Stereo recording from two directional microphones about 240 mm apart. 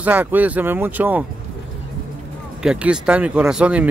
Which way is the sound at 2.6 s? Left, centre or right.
Centre.